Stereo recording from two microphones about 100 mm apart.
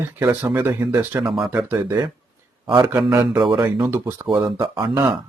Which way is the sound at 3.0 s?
5° right (ahead or behind).